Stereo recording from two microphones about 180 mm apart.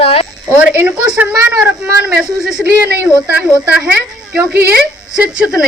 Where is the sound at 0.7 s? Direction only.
5° right (ahead or behind).